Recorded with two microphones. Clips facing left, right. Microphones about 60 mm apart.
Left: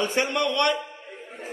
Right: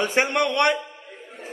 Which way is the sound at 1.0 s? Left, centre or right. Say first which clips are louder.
Left 1 dB; left.